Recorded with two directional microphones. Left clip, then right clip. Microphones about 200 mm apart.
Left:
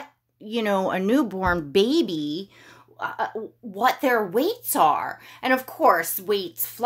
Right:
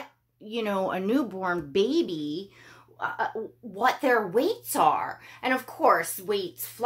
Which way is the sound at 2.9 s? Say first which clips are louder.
Left 2 dB; 40° left (ahead or behind).